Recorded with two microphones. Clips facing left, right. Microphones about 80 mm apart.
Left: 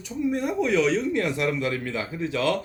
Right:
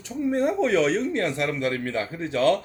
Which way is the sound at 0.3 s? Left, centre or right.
Right.